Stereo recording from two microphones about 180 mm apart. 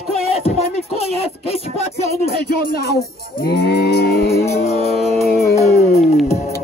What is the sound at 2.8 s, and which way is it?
Livestock, 60° left (ahead or behind).